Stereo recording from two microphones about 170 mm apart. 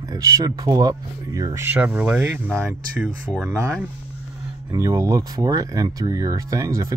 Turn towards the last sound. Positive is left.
turn(degrees=-20)  # may be behind; listen again after turning